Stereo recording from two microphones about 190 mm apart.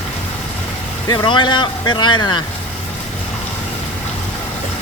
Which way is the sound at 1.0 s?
25° left (ahead or behind).